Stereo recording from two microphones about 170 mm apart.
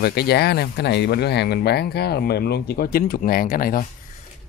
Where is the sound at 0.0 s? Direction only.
70° left (ahead or behind).